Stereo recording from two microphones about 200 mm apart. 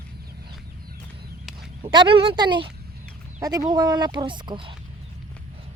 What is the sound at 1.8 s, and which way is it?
Speech, 25° right (ahead or behind).